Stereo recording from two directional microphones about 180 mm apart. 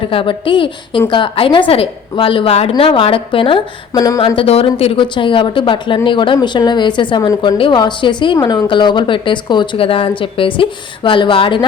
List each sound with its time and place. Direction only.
0.1 s speech: 30° left (ahead or behind)
4.4 s speech: 30° left (ahead or behind)